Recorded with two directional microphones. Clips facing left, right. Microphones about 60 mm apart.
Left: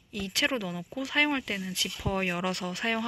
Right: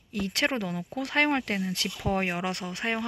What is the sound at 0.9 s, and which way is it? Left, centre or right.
Speech, right.